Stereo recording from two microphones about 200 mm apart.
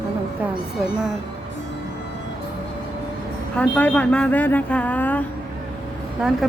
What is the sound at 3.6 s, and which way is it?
Speech, 5° left (ahead or behind).